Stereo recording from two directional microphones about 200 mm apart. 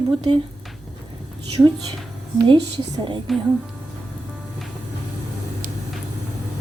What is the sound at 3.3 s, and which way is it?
Speech, centre (ahead or behind).